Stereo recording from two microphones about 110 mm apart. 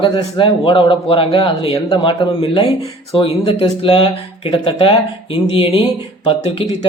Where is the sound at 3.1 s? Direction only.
60° left (ahead or behind).